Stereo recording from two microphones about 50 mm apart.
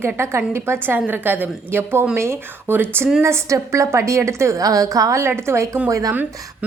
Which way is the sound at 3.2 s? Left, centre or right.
Right.